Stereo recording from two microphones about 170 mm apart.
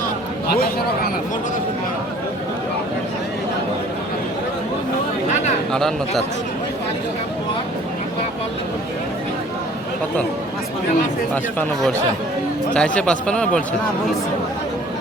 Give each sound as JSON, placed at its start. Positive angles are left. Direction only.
{"t": 0.5, "sound": "speech", "side_deg": 60}
{"t": 5.7, "sound": "a man's voice", "side_deg": 0}
{"t": 12.7, "sound": "a man's voice", "side_deg": 5}